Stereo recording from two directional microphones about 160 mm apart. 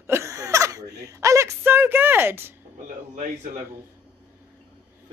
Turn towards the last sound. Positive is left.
turn(degrees=-50)  # may be behind; listen again after turning